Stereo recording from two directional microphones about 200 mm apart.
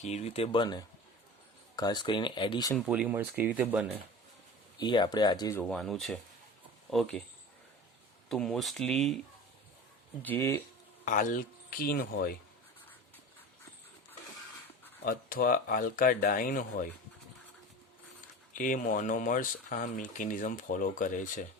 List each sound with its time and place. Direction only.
0.0 s speech: 35° left (ahead or behind)
2.8 s speech: 5° right (ahead or behind)
4.8 s speech: 20° left (ahead or behind)
5.6 s speech: centre (ahead or behind)
8.3 s speech: centre (ahead or behind)
10.2 s speech: 10° left (ahead or behind)
11.0 s speech: 40° left (ahead or behind)
15.0 s speech: 45° left (ahead or behind)
18.5 s speech: 40° left (ahead or behind)